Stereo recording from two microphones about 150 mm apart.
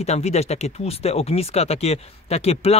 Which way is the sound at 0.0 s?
45° left (ahead or behind).